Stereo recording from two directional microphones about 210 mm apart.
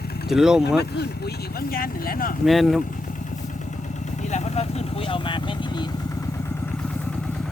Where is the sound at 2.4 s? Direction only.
Centre (ahead or behind).